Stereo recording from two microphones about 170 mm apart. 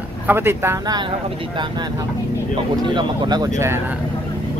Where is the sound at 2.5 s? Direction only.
25° right (ahead or behind).